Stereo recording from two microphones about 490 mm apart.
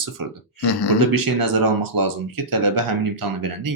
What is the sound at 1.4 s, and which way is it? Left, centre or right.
Speech, right.